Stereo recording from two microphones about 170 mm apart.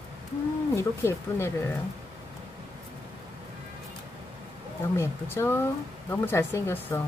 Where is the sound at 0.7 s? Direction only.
15° left (ahead or behind).